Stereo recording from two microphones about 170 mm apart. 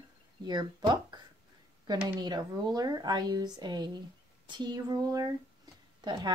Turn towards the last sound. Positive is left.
turn(degrees=-25)  # may be behind; listen again after turning